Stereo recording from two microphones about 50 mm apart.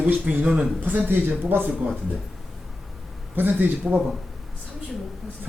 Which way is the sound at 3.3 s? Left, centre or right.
Right.